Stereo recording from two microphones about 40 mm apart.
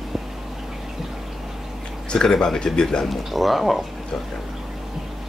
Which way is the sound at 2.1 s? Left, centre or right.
Centre.